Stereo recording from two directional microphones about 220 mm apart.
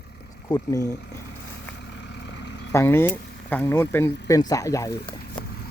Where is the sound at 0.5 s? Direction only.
15° left (ahead or behind).